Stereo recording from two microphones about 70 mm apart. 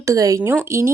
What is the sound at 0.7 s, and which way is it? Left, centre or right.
Speech, right.